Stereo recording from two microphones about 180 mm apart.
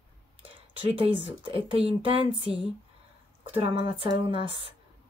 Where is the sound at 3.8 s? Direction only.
30° right (ahead or behind).